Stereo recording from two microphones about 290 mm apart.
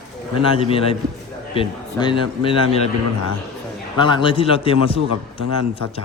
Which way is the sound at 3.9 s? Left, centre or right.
Centre.